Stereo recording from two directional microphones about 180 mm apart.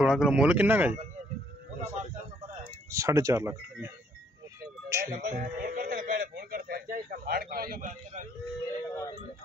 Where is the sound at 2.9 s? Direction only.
15° right (ahead or behind).